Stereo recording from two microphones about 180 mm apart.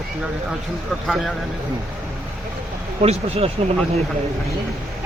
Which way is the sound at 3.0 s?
35° right (ahead or behind).